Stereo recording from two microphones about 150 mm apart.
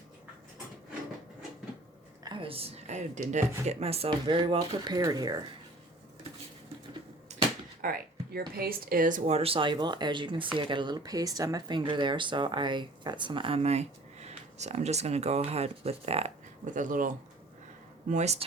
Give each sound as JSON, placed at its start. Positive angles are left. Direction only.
{"t": 2.2, "sound": "a woman's voice", "side_deg": -35}
{"t": 7.3, "sound": "a sound", "side_deg": -50}
{"t": 7.8, "sound": "speech", "side_deg": -80}
{"t": 16.7, "sound": "speech", "side_deg": -60}
{"t": 18.1, "sound": "speech", "side_deg": -50}